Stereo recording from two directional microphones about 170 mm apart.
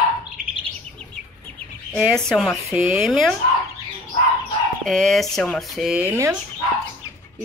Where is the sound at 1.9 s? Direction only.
Centre (ahead or behind).